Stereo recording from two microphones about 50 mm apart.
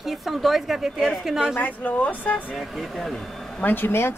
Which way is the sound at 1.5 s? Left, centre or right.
Left.